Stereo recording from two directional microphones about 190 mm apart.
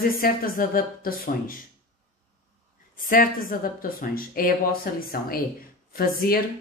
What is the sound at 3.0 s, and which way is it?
Speech, 45° left (ahead or behind).